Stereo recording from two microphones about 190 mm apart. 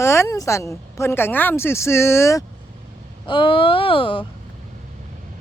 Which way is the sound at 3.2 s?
25° left (ahead or behind).